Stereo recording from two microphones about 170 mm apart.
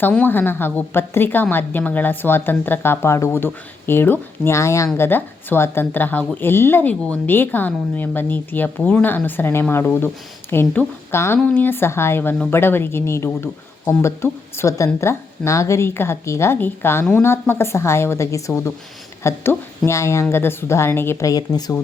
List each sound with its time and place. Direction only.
0.0 s speech: 10° left (ahead or behind)